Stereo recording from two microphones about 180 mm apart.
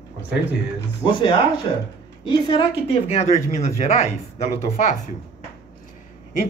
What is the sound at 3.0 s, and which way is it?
A woman's voice, 35° left (ahead or behind).